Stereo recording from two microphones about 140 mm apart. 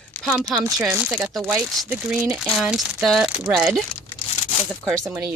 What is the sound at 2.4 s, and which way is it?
Speech, centre (ahead or behind).